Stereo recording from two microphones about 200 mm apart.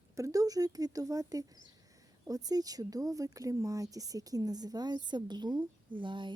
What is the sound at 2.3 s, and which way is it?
A woman's voice, 20° right (ahead or behind).